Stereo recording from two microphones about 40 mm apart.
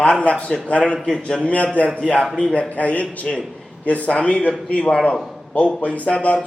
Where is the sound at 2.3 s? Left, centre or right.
Left.